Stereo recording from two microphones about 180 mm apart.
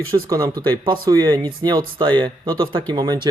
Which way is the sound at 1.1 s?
20° right (ahead or behind).